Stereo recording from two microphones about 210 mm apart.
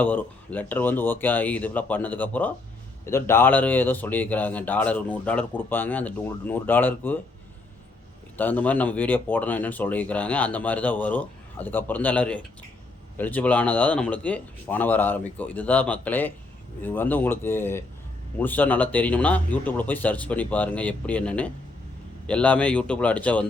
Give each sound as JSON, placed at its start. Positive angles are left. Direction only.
{"t": 0.0, "sound": "speech", "side_deg": 10}
{"t": 8.4, "sound": "speech", "side_deg": 10}